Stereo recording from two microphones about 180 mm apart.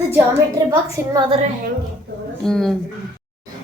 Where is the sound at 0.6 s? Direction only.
20° right (ahead or behind).